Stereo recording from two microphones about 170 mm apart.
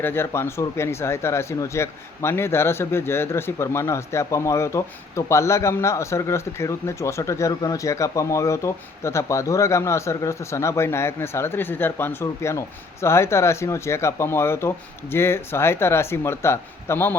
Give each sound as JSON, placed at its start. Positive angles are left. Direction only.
{"t": 0.0, "sound": "speech", "side_deg": 15}